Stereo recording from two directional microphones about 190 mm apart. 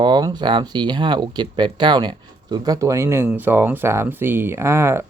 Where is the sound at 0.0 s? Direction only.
25° right (ahead or behind).